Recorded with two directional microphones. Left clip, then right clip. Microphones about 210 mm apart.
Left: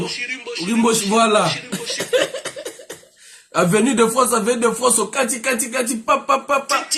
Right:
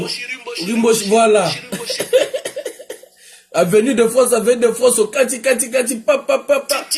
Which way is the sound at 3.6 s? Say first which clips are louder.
Right 3 dB; centre (ahead or behind).